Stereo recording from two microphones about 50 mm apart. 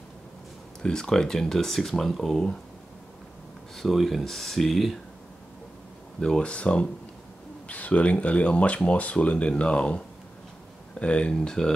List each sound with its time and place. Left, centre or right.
0.8 s speech: centre
3.7 s speech: centre
6.1 s speech: centre